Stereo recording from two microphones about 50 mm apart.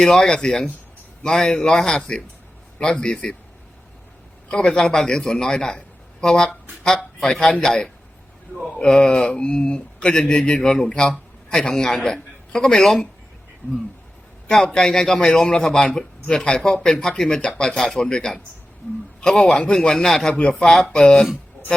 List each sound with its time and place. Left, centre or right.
0.0 s a man's voice: centre
4.7 s a man's voice: centre
13.6 s speech: left
14.4 s a man's voice: centre